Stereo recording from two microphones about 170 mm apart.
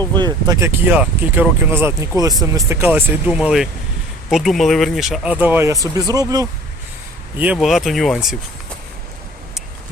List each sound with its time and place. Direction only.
0.2 s speech: 25° right (ahead or behind)
0.9 s speech: 10° right (ahead or behind)
7.3 s speech: 10° right (ahead or behind)